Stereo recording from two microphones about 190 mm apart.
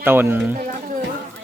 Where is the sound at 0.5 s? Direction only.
45° right (ahead or behind).